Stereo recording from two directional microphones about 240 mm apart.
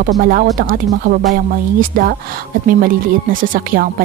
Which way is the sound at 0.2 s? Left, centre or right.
Right.